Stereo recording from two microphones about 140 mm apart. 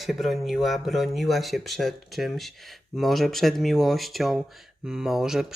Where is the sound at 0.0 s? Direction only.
Centre (ahead or behind).